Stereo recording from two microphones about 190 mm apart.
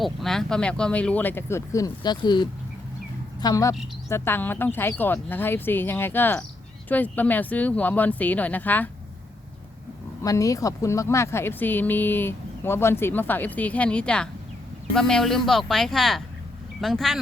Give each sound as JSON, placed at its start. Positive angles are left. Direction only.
{"t": 0.0, "sound": "speech", "side_deg": 0}
{"t": 10.2, "sound": "speech", "side_deg": 15}